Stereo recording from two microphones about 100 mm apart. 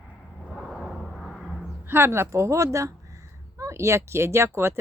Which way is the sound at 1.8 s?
25° right (ahead or behind).